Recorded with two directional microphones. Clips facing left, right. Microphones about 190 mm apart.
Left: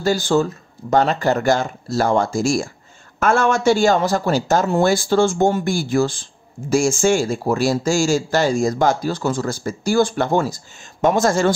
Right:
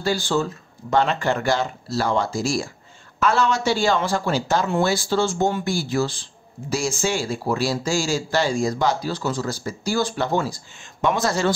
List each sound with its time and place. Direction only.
0.0 s speech: 45° left (ahead or behind)